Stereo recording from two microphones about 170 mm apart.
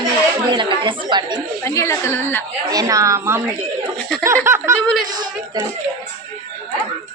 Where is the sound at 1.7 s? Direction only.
15° left (ahead or behind).